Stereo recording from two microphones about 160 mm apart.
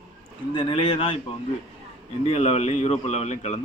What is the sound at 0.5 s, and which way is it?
Speech, 35° left (ahead or behind).